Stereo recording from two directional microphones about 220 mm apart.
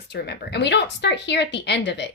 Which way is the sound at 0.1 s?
50° left (ahead or behind).